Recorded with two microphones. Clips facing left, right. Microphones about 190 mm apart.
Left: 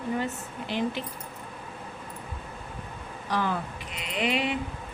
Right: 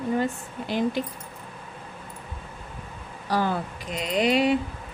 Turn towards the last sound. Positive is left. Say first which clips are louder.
# right 7 dB
turn(degrees=-40)  # may be behind; listen again after turning